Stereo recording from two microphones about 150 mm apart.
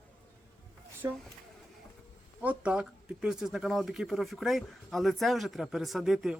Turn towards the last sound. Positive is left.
turn(degrees=-5)  # may be behind; listen again after turning